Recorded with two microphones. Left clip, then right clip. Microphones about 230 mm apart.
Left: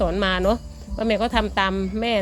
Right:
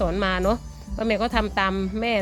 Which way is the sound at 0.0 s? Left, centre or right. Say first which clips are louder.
Left 2 dB; centre.